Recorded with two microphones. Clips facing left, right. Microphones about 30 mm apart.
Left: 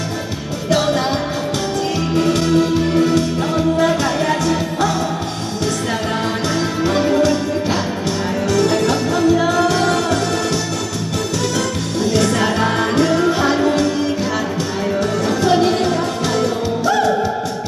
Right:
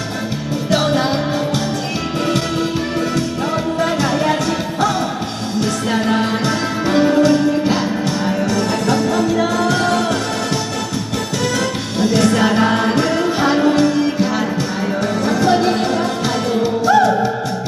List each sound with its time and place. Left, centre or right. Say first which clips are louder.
0.7 s music: even; centre
6.8 s music: right 3 dB; centre
8.5 s music: left 5 dB; centre
9.2 s music: left 2 dB; centre
9.6 s music: even; centre
12.0 s music: right 3 dB; centre
15.4 s music: left 1 dB; centre
16.8 s music: right 4 dB; right